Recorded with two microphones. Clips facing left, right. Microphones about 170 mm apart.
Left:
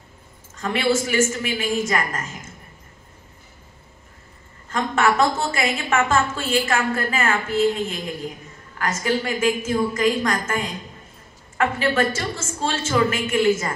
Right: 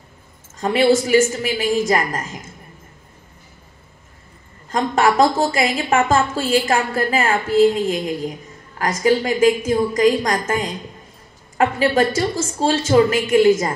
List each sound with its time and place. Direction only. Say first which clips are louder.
0.6 s a woman's voice: right 6 dB; 35° right (ahead or behind)
4.6 s a woman's voice: right 3 dB; 35° right (ahead or behind)
9.0 s a woman's voice: right 7 dB; 40° right (ahead or behind)